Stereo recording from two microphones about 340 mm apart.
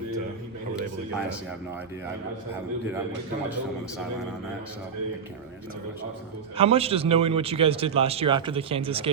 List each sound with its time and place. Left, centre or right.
6.6 s a man's voice: centre